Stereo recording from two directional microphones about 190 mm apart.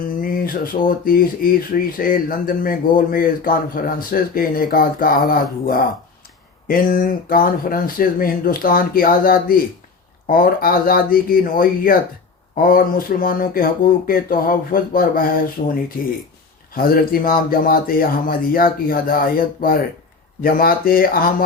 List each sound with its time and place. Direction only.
0.2 s speech: 50° left (ahead or behind)